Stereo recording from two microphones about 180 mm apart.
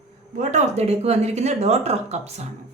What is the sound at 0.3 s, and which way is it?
Speech, 40° right (ahead or behind).